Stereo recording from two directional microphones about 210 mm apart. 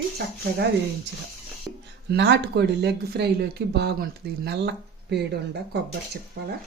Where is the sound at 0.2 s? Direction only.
50° right (ahead or behind).